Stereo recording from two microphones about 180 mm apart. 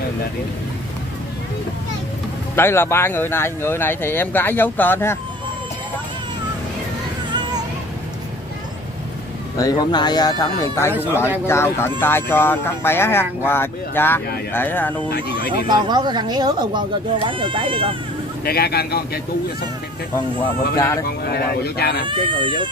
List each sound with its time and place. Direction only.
2.5 s speech: 15° left (ahead or behind)
9.6 s speech: 20° left (ahead or behind)
15.0 s speech: 65° left (ahead or behind)
15.3 s speech: 25° right (ahead or behind)
18.4 s speech: 60° left (ahead or behind)
20.7 s speech: 15° left (ahead or behind)
21.2 s speech: 60° left (ahead or behind)
22.0 s speech: 25° right (ahead or behind)